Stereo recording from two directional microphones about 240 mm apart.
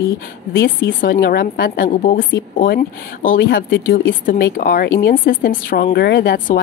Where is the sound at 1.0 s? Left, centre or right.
Left.